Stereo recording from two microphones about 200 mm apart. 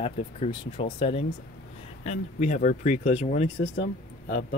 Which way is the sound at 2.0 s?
35° left (ahead or behind).